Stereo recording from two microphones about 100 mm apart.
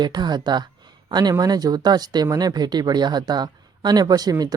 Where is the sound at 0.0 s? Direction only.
45° right (ahead or behind).